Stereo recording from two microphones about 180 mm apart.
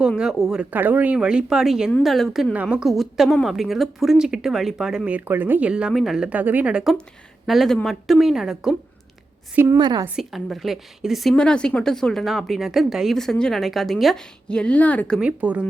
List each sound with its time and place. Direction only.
0.2 s a woman's voice: centre (ahead or behind)
9.7 s a woman's voice: 25° right (ahead or behind)
10.2 s a woman's voice: centre (ahead or behind)
15.2 s a woman's voice: 5° right (ahead or behind)